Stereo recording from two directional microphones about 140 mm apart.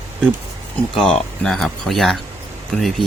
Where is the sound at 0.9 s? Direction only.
5° left (ahead or behind).